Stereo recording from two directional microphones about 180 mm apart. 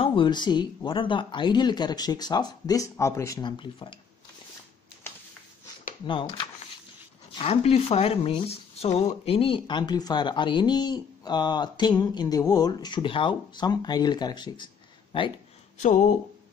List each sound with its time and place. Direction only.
0.0 s speech: 25° left (ahead or behind)
5.1 s a sound: 10° left (ahead or behind)
6.0 s speech: 25° left (ahead or behind)
15.8 s speech: 40° left (ahead or behind)